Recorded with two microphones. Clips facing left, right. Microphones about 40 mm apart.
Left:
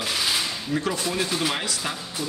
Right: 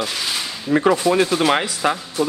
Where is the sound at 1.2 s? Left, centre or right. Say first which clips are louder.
Right 8 dB; right.